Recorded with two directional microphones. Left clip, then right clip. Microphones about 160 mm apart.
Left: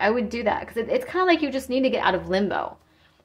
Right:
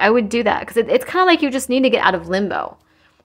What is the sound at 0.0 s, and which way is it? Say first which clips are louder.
A woman's voice: right 7 dB; 50° right (ahead or behind).